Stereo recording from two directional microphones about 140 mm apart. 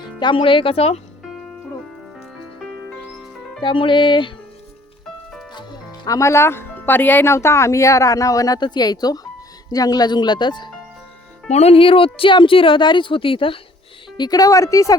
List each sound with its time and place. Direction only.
0.0 s speech: 35° left (ahead or behind)
3.6 s speech: 35° left (ahead or behind)
6.1 s speech: 20° left (ahead or behind)
11.5 s speech: 45° left (ahead or behind)
14.2 s speech: 25° left (ahead or behind)